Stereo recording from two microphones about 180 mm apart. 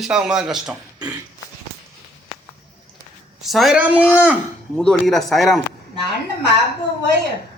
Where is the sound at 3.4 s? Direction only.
Centre (ahead or behind).